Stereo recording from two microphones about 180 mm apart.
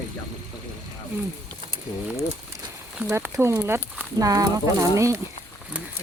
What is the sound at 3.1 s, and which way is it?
Speech, 15° right (ahead or behind).